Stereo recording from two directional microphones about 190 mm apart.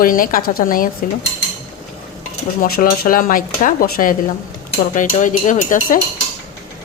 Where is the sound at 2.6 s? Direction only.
55° left (ahead or behind).